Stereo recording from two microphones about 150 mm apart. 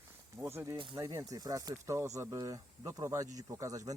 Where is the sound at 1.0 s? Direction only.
20° right (ahead or behind).